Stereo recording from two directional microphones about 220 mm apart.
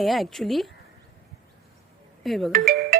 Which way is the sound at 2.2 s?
Centre (ahead or behind).